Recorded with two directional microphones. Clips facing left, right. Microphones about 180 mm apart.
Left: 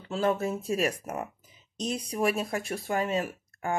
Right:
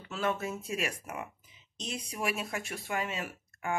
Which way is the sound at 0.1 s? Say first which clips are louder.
Left 6 dB; 30° left (ahead or behind).